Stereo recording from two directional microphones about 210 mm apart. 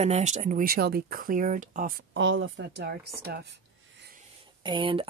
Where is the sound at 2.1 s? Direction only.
60° right (ahead or behind).